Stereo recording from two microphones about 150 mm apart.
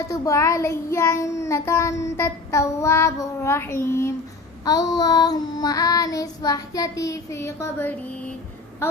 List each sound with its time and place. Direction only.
0.1 s child singing: 20° left (ahead or behind)
3.8 s speech: 15° left (ahead or behind)
4.6 s child singing: 25° left (ahead or behind)
8.8 s speech: 15° left (ahead or behind)